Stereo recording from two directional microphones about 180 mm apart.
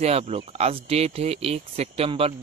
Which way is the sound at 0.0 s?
35° right (ahead or behind).